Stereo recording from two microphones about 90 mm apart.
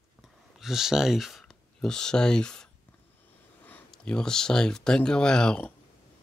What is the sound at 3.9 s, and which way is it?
Speech, 10° left (ahead or behind).